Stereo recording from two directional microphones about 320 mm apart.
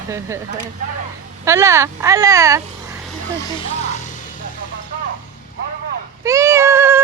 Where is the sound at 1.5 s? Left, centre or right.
Centre.